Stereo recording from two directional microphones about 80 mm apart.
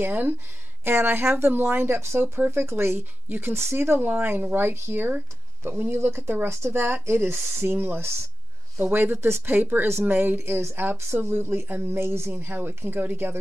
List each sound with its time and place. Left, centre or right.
0.0 s speech: right